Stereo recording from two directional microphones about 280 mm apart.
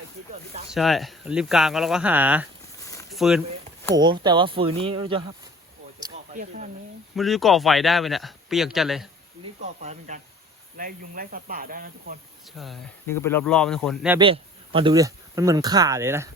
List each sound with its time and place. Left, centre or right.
0.7 s speech: centre
3.9 s speech: centre
6.3 s speech: right
7.2 s speech: centre
9.8 s speech: right
12.5 s speech: centre
14.2 s speech: centre